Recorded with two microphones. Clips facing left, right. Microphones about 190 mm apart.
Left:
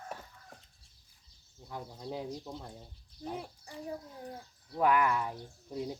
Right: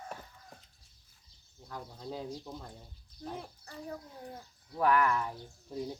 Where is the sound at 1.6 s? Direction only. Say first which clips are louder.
Left 1 dB; 10° left (ahead or behind).